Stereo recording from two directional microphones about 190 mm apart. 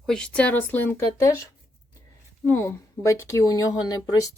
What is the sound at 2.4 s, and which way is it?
Speech, 10° left (ahead or behind).